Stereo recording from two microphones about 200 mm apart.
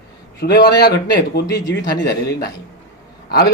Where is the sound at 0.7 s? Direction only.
55° left (ahead or behind).